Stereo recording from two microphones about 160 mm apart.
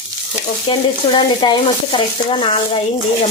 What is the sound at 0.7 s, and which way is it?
Speech, 30° left (ahead or behind).